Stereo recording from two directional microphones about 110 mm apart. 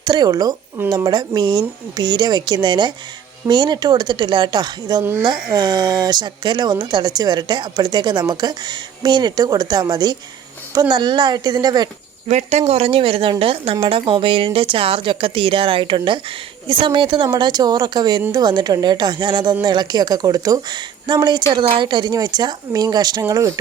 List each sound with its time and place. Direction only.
0.0 s speech: 40° right (ahead or behind)
12.3 s speech: 90° right; by 13.7 s 55° right (ahead or behind)
13.7 s speech: 45° right (ahead or behind)
23.2 s speech: 30° right (ahead or behind)